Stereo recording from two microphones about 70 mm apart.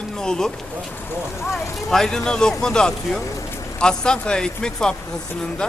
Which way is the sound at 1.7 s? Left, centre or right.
Centre.